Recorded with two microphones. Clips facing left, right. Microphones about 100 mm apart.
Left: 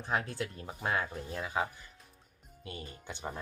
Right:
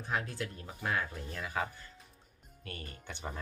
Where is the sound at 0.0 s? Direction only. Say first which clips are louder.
Left 2 dB; 30° left (ahead or behind).